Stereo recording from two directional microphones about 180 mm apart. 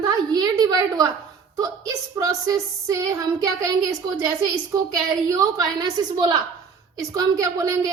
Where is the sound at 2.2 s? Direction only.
20° right (ahead or behind).